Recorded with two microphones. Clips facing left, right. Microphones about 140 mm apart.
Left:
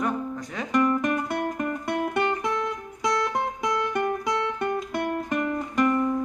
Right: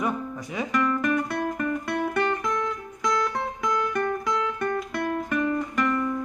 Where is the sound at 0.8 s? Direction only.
30° left (ahead or behind).